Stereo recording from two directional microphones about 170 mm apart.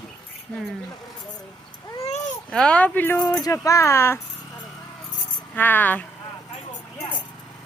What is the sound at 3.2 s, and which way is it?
Speech, 20° left (ahead or behind).